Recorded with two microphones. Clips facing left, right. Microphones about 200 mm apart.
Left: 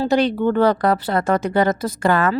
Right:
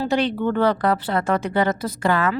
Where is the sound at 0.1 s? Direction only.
40° left (ahead or behind).